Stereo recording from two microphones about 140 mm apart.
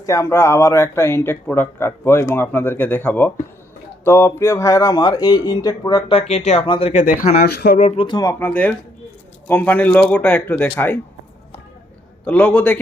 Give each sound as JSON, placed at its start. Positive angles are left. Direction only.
{"t": 0.0, "sound": "speech", "side_deg": 20}
{"t": 6.9, "sound": "speech", "side_deg": 75}
{"t": 8.0, "sound": "speech", "side_deg": 30}
{"t": 8.3, "sound": "speech", "side_deg": 15}
{"t": 12.2, "sound": "speech", "side_deg": 10}